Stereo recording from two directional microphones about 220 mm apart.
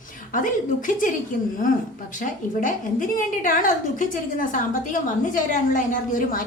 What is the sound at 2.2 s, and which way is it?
A woman's voice, 35° left (ahead or behind).